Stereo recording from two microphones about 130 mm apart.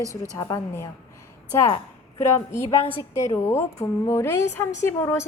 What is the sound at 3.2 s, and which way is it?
A woman's voice, 20° left (ahead or behind).